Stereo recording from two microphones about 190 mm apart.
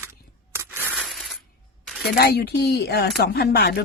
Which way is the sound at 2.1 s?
55° left (ahead or behind).